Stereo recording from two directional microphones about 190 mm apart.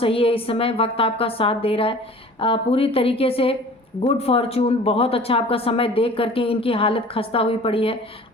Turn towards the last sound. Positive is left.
turn(degrees=30)  # may be behind; listen again after turning